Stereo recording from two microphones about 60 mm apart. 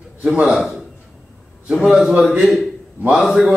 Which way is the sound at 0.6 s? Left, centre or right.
Centre.